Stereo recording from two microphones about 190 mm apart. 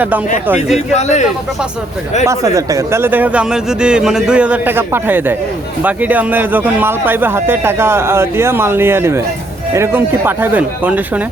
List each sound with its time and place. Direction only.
0.4 s speech: 10° right (ahead or behind)
0.9 s speech: 35° left (ahead or behind)
2.2 s speech: 15° right (ahead or behind)